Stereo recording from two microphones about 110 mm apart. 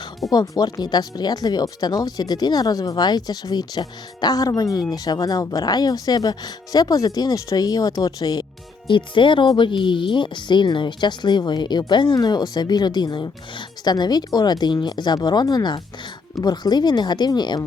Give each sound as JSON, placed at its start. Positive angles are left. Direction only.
{"t": 0.3, "sound": "speech", "side_deg": 35}
{"t": 8.9, "sound": "speech", "side_deg": 50}